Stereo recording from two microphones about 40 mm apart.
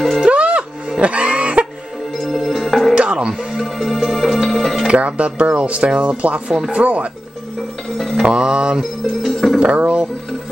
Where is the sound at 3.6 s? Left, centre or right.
Centre.